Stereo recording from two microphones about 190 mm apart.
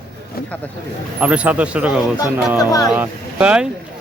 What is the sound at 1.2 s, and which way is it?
Speech, 5° right (ahead or behind).